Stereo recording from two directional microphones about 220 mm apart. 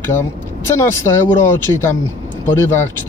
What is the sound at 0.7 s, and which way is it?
Speech, 10° left (ahead or behind).